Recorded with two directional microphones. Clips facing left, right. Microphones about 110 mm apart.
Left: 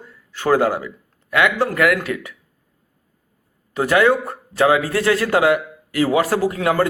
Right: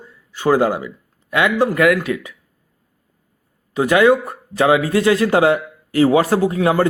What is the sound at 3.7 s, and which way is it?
Speech, 15° right (ahead or behind).